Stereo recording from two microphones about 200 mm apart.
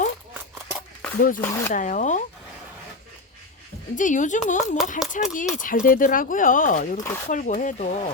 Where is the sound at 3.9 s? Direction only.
40° left (ahead or behind).